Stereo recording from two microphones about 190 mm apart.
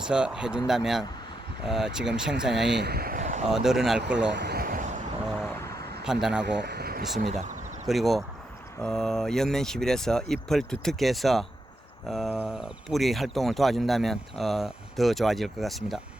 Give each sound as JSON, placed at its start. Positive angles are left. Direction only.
{"t": 0.0, "sound": "speech", "side_deg": -5}
{"t": 2.7, "sound": "vehicle", "side_deg": -55}
{"t": 3.5, "sound": "speech", "side_deg": 0}
{"t": 4.3, "sound": "a sound", "side_deg": -60}
{"t": 6.1, "sound": "speech", "side_deg": -5}
{"t": 6.4, "sound": "speech", "side_deg": -65}
{"t": 7.2, "sound": "speech", "side_deg": -40}
{"t": 7.9, "sound": "speech", "side_deg": 0}